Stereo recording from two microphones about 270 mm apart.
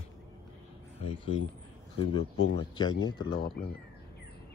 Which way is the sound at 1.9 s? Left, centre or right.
Centre.